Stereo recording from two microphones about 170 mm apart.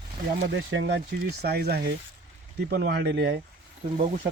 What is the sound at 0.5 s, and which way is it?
Speech, 90° right.